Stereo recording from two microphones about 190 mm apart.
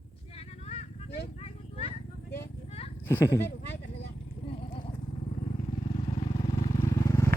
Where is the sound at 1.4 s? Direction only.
35° left (ahead or behind).